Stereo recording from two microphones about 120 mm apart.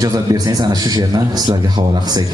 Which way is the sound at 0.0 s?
30° right (ahead or behind).